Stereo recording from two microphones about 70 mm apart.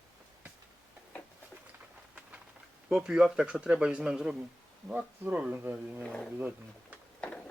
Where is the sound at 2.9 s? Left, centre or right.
Centre.